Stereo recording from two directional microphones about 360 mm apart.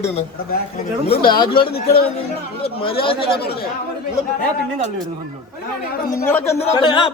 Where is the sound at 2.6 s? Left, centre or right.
Centre.